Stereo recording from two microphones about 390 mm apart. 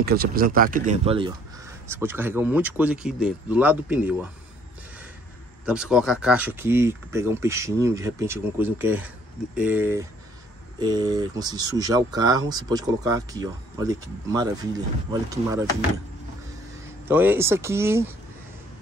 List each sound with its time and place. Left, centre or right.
0.0 s speech: right; by 4.3 s centre
5.7 s speech: centre
17.1 s speech: centre